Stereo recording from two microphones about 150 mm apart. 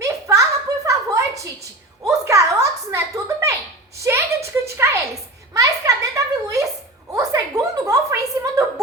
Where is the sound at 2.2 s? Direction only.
20° right (ahead or behind).